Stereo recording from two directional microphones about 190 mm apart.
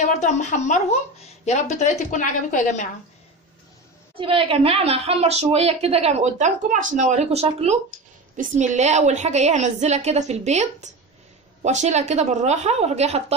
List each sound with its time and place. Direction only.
0.0 s a woman's voice: 40° left (ahead or behind)
4.2 s a woman's voice: 30° right (ahead or behind)